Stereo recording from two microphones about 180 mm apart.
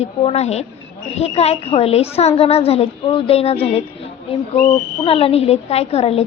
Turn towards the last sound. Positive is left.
turn(degrees=35)  # may be behind; listen again after turning